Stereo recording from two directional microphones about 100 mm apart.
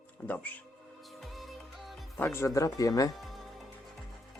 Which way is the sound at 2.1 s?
25° left (ahead or behind).